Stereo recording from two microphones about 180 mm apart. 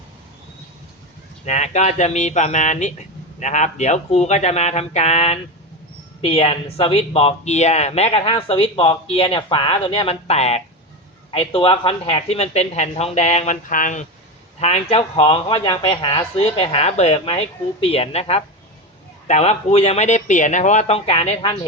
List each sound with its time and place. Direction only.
1.5 s speech: 40° left (ahead or behind)
14.6 s speech: 35° left (ahead or behind)